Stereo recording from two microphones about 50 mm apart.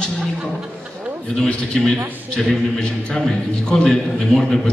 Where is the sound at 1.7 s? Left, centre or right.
Centre.